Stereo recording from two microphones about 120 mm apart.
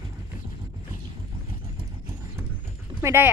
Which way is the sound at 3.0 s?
20° right (ahead or behind).